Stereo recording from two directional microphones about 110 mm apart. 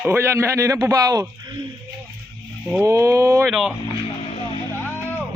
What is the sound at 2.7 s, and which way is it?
Speech, 25° right (ahead or behind).